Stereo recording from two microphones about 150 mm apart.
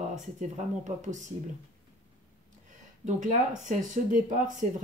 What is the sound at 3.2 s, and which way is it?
Speech, 55° right (ahead or behind).